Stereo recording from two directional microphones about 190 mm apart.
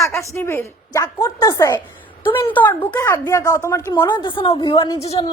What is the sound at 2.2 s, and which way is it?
Speech, 25° left (ahead or behind).